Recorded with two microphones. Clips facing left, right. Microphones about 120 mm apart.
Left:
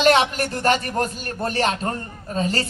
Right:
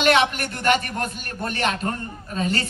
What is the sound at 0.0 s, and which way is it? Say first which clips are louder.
A man's voice: left 2 dB; 35° left (ahead or behind).